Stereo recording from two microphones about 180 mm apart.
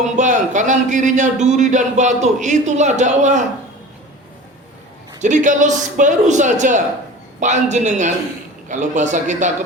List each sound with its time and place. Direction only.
0.2 s a man's voice: 45° right (ahead or behind)
5.2 s a man's voice: 45° right (ahead or behind)